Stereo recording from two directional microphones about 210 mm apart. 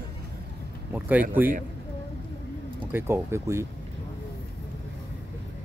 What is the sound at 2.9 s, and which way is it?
Speech, 10° right (ahead or behind).